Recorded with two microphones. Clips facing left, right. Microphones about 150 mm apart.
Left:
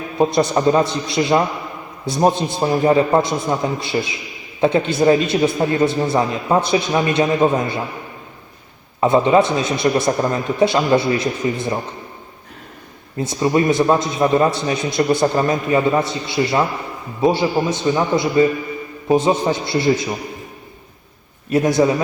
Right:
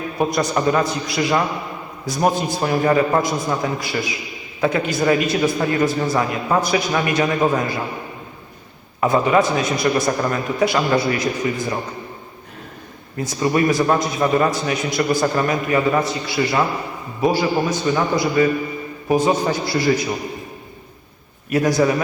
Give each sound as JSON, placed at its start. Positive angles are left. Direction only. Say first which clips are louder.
{"t": 0.2, "sound": "a man's voice", "louder": "left 4 dB", "side_deg": 25}
{"t": 9.0, "sound": "a man's voice", "louder": "left 3 dB", "side_deg": 25}
{"t": 13.1, "sound": "a man's voice", "louder": "left 2 dB", "side_deg": 25}
{"t": 21.5, "sound": "a man's voice", "louder": "left 2 dB", "side_deg": 25}